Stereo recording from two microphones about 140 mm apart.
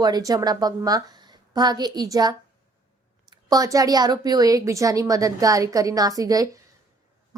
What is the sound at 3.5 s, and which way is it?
A woman's voice, 25° right (ahead or behind).